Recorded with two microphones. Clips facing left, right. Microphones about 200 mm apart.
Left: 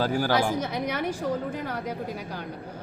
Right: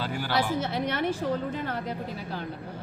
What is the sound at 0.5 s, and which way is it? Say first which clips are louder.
A woman's voice: even; 10° left (ahead or behind).